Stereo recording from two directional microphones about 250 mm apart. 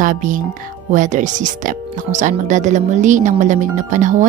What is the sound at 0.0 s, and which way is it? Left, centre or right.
Speech, right.